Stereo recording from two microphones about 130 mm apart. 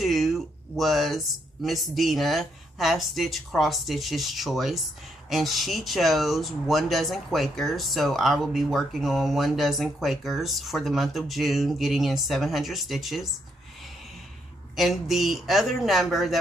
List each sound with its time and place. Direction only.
0.0 s speech: centre (ahead or behind)
14.8 s speech: centre (ahead or behind)